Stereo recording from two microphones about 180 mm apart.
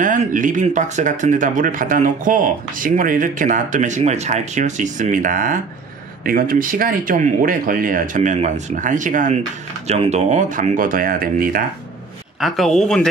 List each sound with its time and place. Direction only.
0.0 s speech: 45° right (ahead or behind)
12.4 s speech: centre (ahead or behind)